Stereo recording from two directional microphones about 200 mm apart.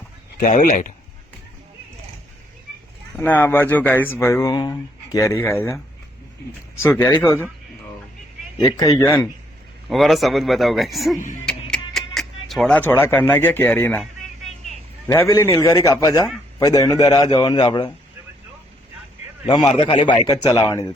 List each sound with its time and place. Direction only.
0.3 s speech: 40° left (ahead or behind)
3.2 s speech: 10° left (ahead or behind)
6.8 s speech: 10° left (ahead or behind)
8.6 s speech: 15° left (ahead or behind)
9.9 s speech: centre (ahead or behind)
11.4 s music: 5° left (ahead or behind)
15.0 s a man's voice: 15° left (ahead or behind)
19.5 s a man's voice: 25° left (ahead or behind)